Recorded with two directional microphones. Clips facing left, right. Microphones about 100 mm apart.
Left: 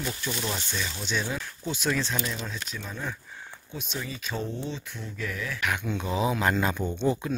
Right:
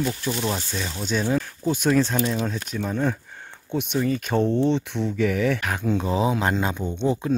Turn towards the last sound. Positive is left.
turn(degrees=-25)  # may be behind; listen again after turning